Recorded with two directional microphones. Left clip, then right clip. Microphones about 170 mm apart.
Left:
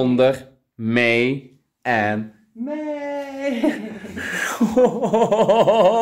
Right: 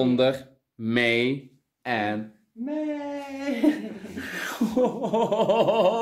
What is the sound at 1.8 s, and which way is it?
Speech, 25° left (ahead or behind).